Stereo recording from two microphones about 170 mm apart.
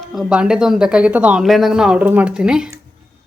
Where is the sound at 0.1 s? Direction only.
5° right (ahead or behind).